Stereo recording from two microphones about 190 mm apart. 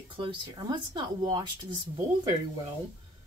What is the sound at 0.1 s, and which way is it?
Speech, 25° right (ahead or behind).